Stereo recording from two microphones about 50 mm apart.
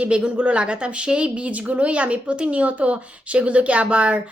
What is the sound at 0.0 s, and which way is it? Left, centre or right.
Speech, right.